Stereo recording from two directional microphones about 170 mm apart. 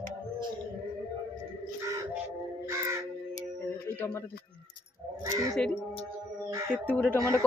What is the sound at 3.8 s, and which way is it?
Speech, 15° left (ahead or behind).